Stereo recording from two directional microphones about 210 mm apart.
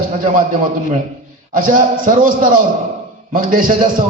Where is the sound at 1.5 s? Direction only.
40° right (ahead or behind).